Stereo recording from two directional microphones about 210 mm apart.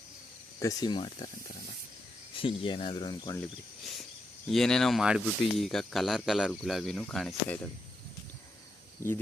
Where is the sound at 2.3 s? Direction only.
25° left (ahead or behind).